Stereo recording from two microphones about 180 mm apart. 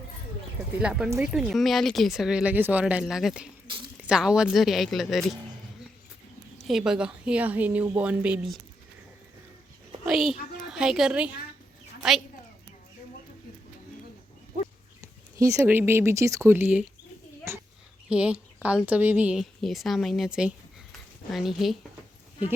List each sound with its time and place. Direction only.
0.8 s speech: 5° right (ahead or behind)
6.7 s a woman's voice: 5° right (ahead or behind)
10.1 s a woman's voice: centre (ahead or behind)
15.0 s a woman's voice: 15° right (ahead or behind); by 21.8 s centre (ahead or behind)